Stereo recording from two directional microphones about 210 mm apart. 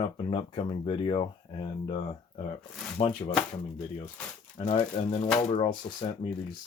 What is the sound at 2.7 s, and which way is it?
Speech, centre (ahead or behind).